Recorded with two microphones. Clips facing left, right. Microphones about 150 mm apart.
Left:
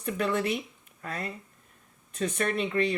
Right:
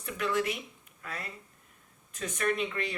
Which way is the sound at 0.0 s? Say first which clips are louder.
Left 3 dB; 30° left (ahead or behind).